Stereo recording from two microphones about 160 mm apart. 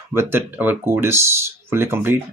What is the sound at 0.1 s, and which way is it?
Speech, 15° right (ahead or behind).